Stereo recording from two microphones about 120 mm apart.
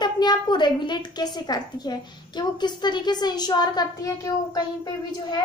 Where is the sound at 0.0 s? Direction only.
35° left (ahead or behind).